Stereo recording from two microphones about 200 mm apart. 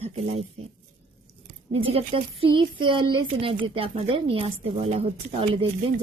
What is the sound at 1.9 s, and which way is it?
A woman's voice, 30° right (ahead or behind).